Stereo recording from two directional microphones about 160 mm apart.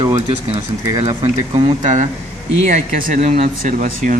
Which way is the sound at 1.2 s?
40° right (ahead or behind).